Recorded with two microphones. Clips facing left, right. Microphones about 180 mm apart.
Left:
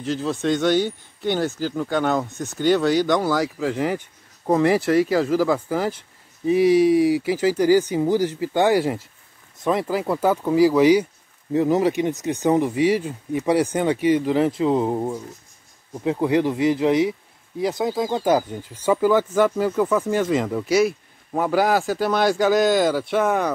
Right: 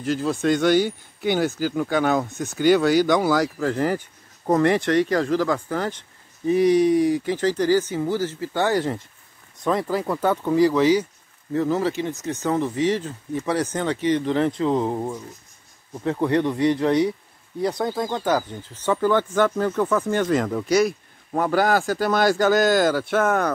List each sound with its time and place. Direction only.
0.0 s speech: 5° right (ahead or behind)
3.3 s speech: 5° left (ahead or behind)